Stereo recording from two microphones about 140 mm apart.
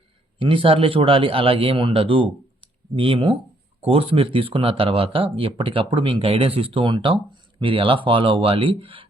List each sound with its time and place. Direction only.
0.3 s speech: 40° right (ahead or behind)